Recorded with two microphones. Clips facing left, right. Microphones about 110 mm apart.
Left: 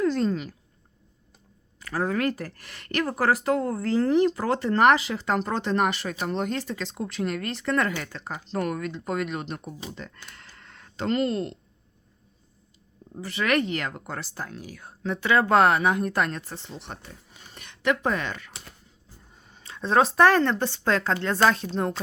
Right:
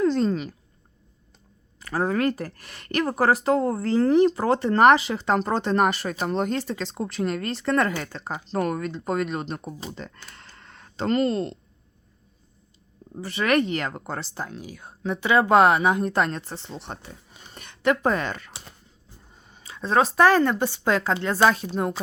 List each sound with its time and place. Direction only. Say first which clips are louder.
0.0 s speech: right 2 dB; 25° right (ahead or behind)
1.8 s speech: right 2 dB; 30° right (ahead or behind)
10.2 s camera: right 1 dB; 35° right (ahead or behind)
13.2 s speech: right 3 dB; 30° right (ahead or behind)
17.5 s a sound: right 3 dB; 35° right (ahead or behind)
19.3 s speech: right 1 dB; 15° right (ahead or behind)